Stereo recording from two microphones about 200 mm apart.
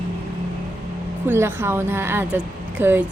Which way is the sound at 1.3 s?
10° right (ahead or behind).